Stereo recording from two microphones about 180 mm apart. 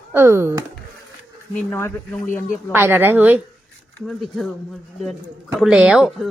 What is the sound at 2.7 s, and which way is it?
Speech, 10° right (ahead or behind).